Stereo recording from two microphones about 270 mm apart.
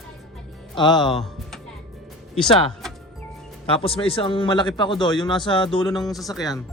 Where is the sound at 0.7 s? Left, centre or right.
Centre.